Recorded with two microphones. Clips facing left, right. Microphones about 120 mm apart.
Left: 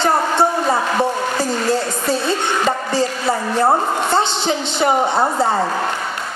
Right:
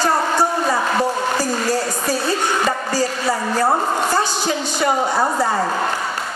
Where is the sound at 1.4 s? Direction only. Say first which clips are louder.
Left 1 dB; 25° left (ahead or behind).